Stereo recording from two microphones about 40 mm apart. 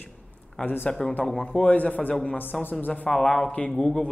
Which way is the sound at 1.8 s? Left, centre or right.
Left.